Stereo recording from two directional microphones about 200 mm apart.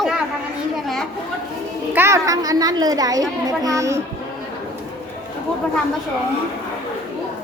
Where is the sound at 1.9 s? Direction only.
15° right (ahead or behind).